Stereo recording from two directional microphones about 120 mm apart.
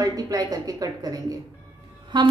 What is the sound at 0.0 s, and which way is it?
A woman's voice, 30° right (ahead or behind).